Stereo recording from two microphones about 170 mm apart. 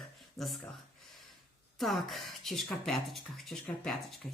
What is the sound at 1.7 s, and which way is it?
Speech, centre (ahead or behind).